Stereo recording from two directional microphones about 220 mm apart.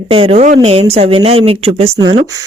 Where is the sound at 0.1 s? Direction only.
25° right (ahead or behind).